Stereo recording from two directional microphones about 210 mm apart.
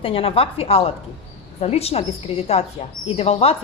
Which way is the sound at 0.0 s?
25° left (ahead or behind).